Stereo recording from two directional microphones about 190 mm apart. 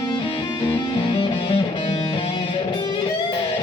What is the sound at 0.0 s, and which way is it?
Music, 25° left (ahead or behind).